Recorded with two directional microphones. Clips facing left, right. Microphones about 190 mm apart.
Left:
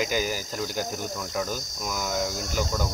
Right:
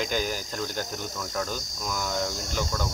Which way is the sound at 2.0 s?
5° left (ahead or behind).